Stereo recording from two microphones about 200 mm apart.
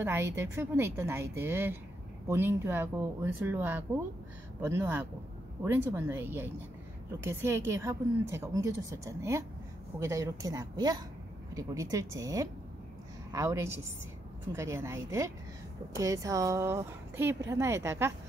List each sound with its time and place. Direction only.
0.0 s a woman's voice: 10° right (ahead or behind)